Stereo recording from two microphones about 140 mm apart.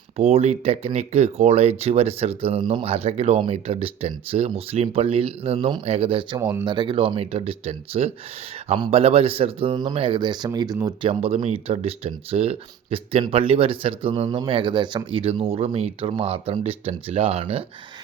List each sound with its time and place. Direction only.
0.2 s speech: 50° right (ahead or behind)
6.4 s speech: 20° right (ahead or behind)
6.7 s speech: 35° right (ahead or behind)